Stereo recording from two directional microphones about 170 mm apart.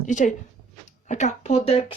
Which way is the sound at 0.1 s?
45° left (ahead or behind).